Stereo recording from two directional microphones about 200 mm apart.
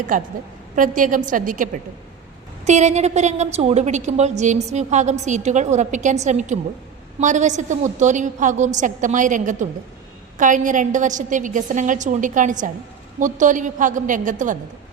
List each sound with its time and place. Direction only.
0.1 s a woman's voice: 40° right (ahead or behind)